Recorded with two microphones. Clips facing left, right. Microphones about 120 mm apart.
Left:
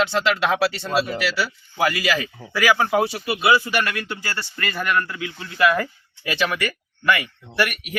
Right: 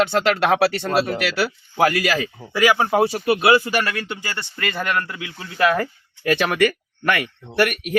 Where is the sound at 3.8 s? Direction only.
30° right (ahead or behind).